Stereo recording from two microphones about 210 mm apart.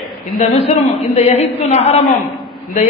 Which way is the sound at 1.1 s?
30° left (ahead or behind).